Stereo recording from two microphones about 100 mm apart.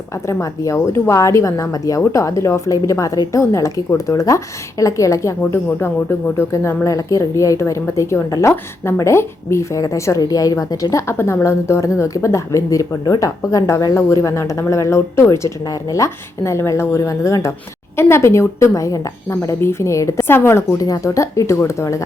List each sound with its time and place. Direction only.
0.3 s speech: 30° left (ahead or behind)
5.5 s a woman's voice: 20° left (ahead or behind)
10.9 s a woman's voice: 25° left (ahead or behind)